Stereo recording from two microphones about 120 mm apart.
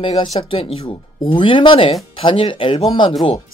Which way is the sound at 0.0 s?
50° left (ahead or behind).